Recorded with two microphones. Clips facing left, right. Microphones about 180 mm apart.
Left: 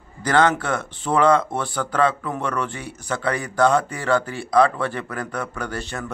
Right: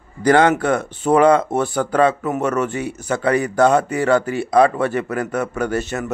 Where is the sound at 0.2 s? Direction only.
15° right (ahead or behind).